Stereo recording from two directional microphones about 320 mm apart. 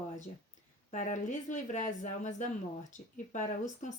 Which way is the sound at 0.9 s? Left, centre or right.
Left.